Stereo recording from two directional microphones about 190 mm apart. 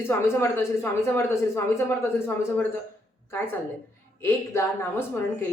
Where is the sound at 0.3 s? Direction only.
10° left (ahead or behind).